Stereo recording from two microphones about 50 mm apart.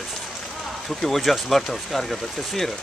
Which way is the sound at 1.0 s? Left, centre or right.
Centre.